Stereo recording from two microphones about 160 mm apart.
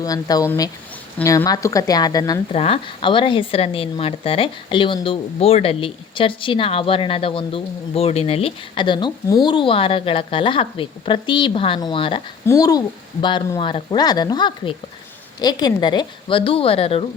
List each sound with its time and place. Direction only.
0.0 s speech: 20° left (ahead or behind)
2.5 s speech: 40° left (ahead or behind)
12.5 s speech: 25° left (ahead or behind)